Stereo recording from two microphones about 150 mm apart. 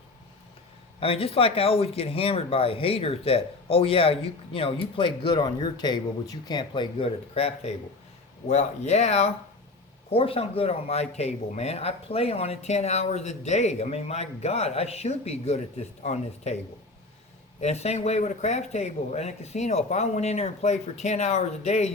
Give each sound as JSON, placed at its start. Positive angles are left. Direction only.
{"t": 0.9, "sound": "speech", "side_deg": 40}
{"t": 17.6, "sound": "speech", "side_deg": 45}